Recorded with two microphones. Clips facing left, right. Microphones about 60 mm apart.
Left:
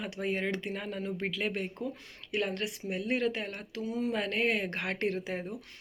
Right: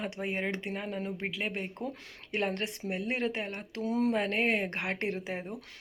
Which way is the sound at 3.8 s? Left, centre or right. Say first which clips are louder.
Right 4 dB; right.